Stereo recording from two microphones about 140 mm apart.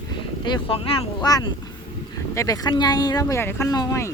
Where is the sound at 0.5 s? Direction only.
40° left (ahead or behind).